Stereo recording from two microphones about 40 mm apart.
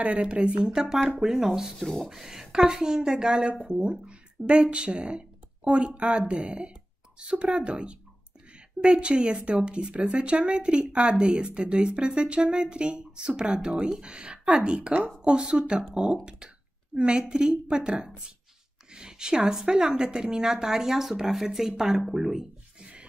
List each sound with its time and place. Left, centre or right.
0.0 s a woman's voice: right; by 1.7 s centre
1.8 s speech: centre
2.0 s a woman's voice: centre